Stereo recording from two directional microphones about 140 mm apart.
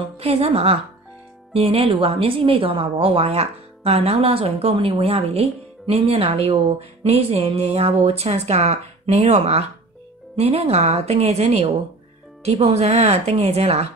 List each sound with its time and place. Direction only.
0.2 s speech: 45° right (ahead or behind)